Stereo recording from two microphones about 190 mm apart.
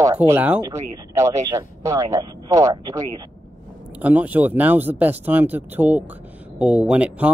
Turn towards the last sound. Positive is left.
turn(degrees=-5)  # may be behind; listen again after turning